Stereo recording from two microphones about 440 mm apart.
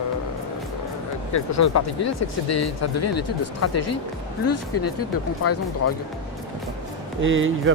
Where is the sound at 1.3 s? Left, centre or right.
Left.